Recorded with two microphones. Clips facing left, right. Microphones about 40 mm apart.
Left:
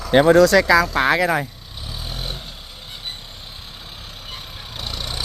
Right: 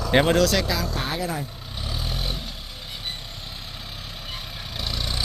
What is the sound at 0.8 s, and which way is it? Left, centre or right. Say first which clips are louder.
Speech: left 10 dB; left.